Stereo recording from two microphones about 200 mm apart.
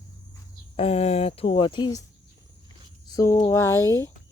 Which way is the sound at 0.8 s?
30° left (ahead or behind).